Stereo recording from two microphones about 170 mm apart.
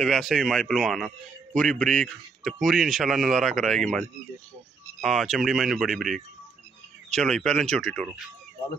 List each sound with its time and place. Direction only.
0.0 s a man's voice: centre (ahead or behind)
5.0 s a man's voice: centre (ahead or behind)